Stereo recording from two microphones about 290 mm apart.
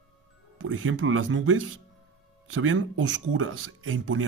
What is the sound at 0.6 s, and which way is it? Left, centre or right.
Speech, right.